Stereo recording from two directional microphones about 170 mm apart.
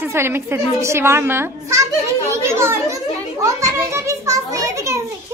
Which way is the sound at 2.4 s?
15° right (ahead or behind).